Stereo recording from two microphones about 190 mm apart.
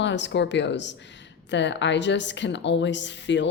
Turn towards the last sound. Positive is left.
turn(degrees=70)  # may be behind; listen again after turning